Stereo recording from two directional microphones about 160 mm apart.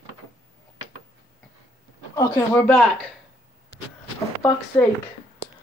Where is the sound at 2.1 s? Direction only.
15° left (ahead or behind).